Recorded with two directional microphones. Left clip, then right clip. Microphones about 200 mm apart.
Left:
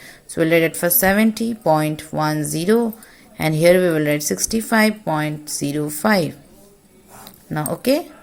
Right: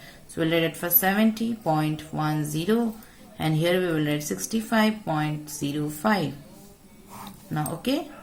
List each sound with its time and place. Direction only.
0.0 s speech: 45° left (ahead or behind)
7.5 s speech: 45° left (ahead or behind)